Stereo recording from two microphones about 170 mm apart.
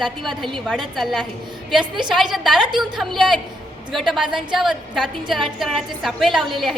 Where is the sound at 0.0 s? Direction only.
Centre (ahead or behind).